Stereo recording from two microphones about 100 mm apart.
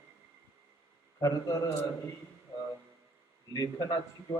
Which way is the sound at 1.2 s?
40° left (ahead or behind).